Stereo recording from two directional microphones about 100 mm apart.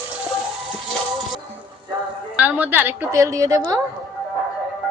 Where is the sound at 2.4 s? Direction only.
15° right (ahead or behind).